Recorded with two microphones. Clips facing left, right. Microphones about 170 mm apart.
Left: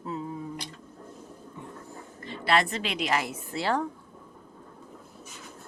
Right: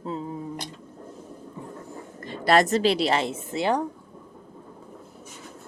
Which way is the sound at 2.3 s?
40° right (ahead or behind).